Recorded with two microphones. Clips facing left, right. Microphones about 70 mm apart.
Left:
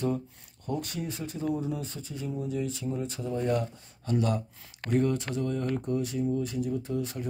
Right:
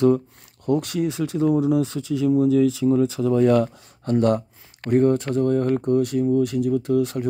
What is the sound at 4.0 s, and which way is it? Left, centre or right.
Speech, right.